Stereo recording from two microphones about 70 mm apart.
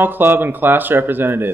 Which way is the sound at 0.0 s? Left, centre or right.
Right.